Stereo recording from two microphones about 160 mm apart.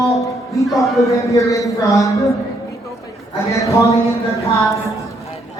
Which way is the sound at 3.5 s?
20° left (ahead or behind).